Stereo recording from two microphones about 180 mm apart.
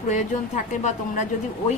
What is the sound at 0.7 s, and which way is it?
Speech, 40° left (ahead or behind).